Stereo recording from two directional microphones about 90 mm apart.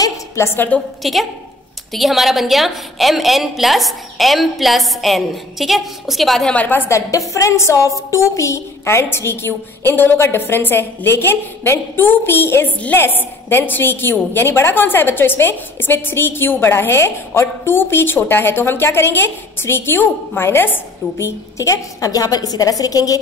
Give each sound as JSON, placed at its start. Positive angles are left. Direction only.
{"t": 0.0, "sound": "a woman's voice", "side_deg": 30}
{"t": 1.0, "sound": "a woman's voice", "side_deg": 0}
{"t": 6.5, "sound": "a woman's voice", "side_deg": 20}
{"t": 6.9, "sound": "a woman's voice", "side_deg": 35}
{"t": 21.5, "sound": "a woman's voice", "side_deg": 40}